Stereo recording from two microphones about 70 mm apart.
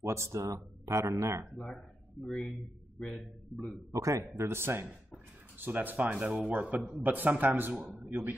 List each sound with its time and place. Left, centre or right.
0.0 s speech: right
2.2 s a man's voice: centre
3.9 s speech: right
4.5 s speech: right